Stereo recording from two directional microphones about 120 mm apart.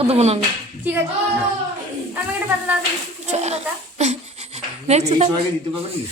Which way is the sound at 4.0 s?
70° right (ahead or behind).